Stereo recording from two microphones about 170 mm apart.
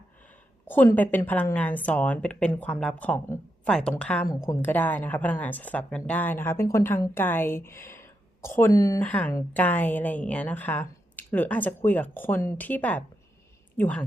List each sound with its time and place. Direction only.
0.7 s a woman's voice: 10° left (ahead or behind)
9.0 s a woman's voice: 10° left (ahead or behind)